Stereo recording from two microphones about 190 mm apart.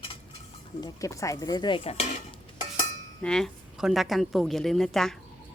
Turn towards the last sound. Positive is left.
turn(degrees=0)  # may be behind; listen again after turning